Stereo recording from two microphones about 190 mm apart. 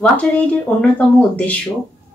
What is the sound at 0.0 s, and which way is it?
Speech, 5° left (ahead or behind).